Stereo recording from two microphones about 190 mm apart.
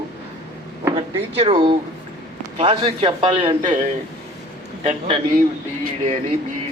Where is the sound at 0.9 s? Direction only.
30° right (ahead or behind).